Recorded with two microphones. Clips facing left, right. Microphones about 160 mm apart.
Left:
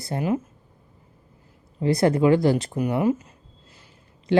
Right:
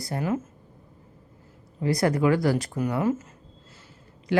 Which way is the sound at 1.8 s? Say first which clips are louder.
Left 4 dB; 25° left (ahead or behind).